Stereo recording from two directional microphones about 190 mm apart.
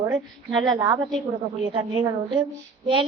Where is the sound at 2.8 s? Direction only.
25° right (ahead or behind).